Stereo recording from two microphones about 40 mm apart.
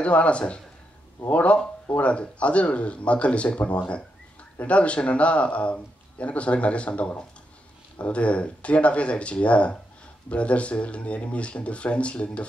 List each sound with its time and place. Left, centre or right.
0.0 s a man's voice: left